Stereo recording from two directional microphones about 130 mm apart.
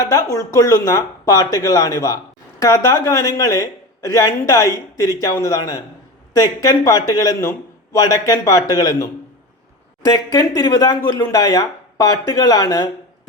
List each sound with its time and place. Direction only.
0.0 s speech: 25° left (ahead or behind)
10.1 s speech: 25° left (ahead or behind)